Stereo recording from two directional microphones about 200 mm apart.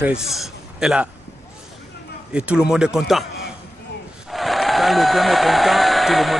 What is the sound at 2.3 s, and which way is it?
Speech, 5° right (ahead or behind).